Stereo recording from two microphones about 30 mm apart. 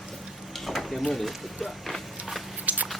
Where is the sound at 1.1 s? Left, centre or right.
Centre.